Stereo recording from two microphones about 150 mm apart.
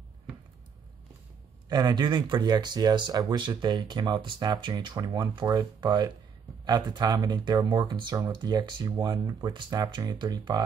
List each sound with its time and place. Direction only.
1.7 s speech: 30° right (ahead or behind)